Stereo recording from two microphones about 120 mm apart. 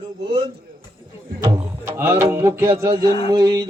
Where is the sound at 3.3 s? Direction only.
35° right (ahead or behind).